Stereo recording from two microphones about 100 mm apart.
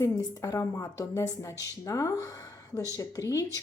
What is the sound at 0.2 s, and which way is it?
Speech, 35° left (ahead or behind).